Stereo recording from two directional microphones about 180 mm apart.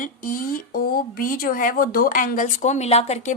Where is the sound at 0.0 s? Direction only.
50° left (ahead or behind).